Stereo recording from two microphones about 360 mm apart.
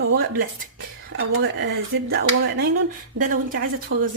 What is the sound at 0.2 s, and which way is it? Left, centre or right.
Speech, right.